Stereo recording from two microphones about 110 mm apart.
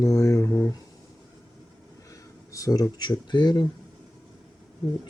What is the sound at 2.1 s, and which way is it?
Speech, 30° left (ahead or behind).